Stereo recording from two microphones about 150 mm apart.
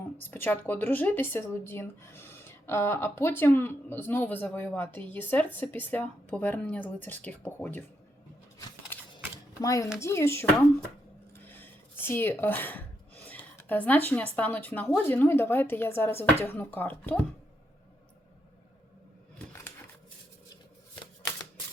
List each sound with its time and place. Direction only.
0.2 s speech: 15° left (ahead or behind)
9.1 s a sound: 20° left (ahead or behind)
10.0 s speech: 15° left (ahead or behind)
11.9 s speech: 15° left (ahead or behind)
13.2 s a sound: 10° left (ahead or behind)
14.3 s speech: 10° left (ahead or behind)